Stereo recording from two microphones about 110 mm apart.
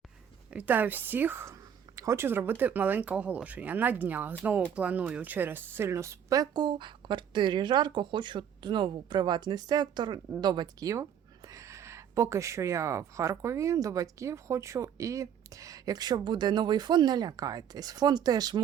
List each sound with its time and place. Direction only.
0.5 s speech: 15° right (ahead or behind); by 18.6 s 35° right (ahead or behind)